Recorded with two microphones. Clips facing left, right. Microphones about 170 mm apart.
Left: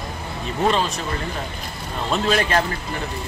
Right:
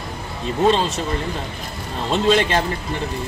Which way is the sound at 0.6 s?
25° right (ahead or behind).